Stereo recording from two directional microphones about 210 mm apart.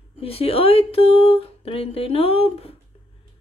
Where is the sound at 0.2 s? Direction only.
25° left (ahead or behind).